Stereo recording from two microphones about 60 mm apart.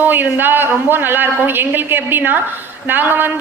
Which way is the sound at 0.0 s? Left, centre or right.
Right.